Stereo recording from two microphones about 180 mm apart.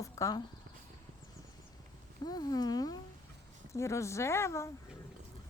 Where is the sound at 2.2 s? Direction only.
20° left (ahead or behind).